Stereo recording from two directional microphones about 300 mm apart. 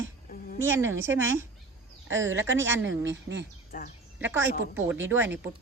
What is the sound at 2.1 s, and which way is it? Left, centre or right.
Speech, right.